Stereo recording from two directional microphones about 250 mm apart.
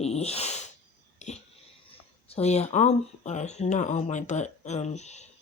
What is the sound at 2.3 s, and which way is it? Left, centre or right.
Speech, left.